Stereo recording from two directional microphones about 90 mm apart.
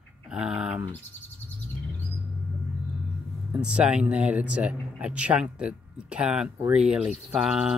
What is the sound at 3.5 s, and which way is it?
Speech, 10° right (ahead or behind).